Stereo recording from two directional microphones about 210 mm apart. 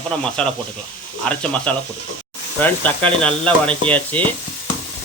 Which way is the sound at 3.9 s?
5° left (ahead or behind).